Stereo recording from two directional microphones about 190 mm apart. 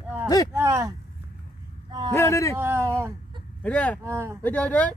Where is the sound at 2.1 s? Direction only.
15° left (ahead or behind).